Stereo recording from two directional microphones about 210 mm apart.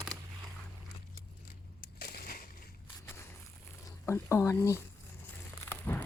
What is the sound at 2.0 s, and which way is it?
Crushing, 45° left (ahead or behind).